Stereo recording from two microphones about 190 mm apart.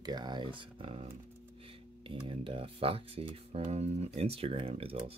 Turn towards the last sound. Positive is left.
turn(degrees=-30)  # may be behind; listen again after turning